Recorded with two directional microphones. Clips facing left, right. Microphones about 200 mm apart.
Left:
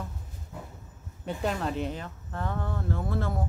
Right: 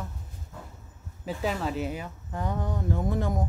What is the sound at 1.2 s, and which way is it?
Speech, centre (ahead or behind).